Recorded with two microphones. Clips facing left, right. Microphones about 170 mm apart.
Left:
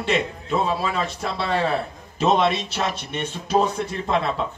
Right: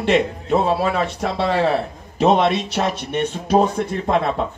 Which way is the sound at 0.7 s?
65° right (ahead or behind).